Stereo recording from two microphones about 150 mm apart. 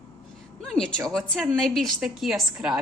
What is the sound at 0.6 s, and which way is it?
A woman's voice, 5° left (ahead or behind).